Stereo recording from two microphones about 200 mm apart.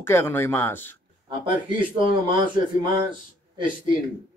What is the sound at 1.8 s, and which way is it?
A man's voice, 25° right (ahead or behind).